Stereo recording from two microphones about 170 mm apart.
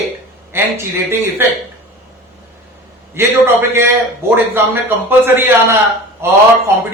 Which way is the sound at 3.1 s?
15° right (ahead or behind).